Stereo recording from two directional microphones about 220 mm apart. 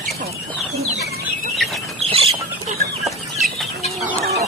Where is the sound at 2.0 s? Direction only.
25° right (ahead or behind).